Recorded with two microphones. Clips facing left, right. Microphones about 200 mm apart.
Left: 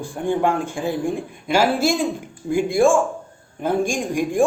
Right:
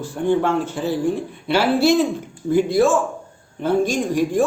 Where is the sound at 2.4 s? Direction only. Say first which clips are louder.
Right 1 dB; 15° left (ahead or behind).